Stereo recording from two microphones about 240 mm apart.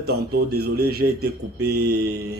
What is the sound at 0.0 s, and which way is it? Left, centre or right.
Speech, right.